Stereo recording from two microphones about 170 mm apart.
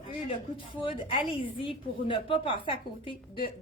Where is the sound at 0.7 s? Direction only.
30° left (ahead or behind).